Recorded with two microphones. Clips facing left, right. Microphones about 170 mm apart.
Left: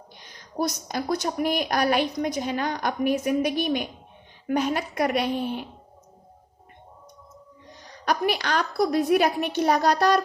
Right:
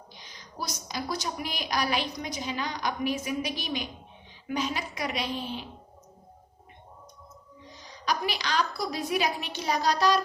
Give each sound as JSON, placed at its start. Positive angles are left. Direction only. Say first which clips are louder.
{"t": 0.2, "sound": "a woman's voice", "louder": "left 11 dB", "side_deg": 55}
{"t": 7.7, "sound": "a woman's voice", "louder": "left 4 dB", "side_deg": 55}